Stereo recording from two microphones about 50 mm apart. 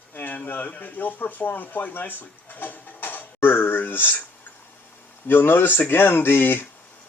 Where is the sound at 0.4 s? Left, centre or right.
Left.